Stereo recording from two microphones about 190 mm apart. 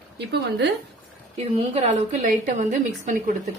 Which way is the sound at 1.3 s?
30° right (ahead or behind).